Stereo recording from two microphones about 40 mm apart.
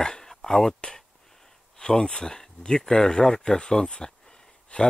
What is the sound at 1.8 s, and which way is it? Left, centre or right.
Speech, centre.